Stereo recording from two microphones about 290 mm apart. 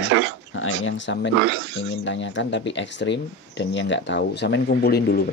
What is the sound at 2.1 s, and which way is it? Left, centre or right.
Speech, left.